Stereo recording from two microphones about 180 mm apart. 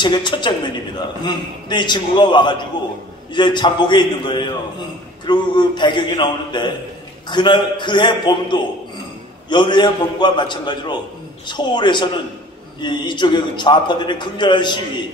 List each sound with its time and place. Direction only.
0.0 s a man's voice: 25° left (ahead or behind)